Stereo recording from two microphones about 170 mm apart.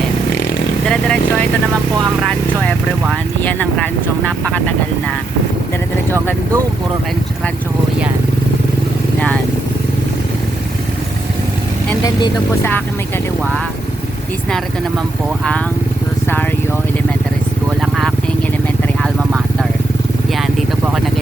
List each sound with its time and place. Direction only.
0.9 s vehicle: 5° left (ahead or behind)
2.2 s speech: 5° left (ahead or behind)